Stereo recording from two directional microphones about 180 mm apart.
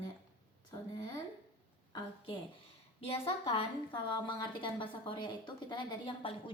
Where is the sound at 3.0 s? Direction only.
30° left (ahead or behind).